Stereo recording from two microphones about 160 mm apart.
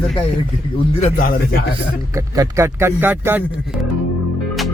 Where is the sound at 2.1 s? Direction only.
20° right (ahead or behind).